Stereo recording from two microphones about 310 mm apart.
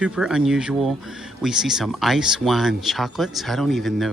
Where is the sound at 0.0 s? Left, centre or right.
Centre.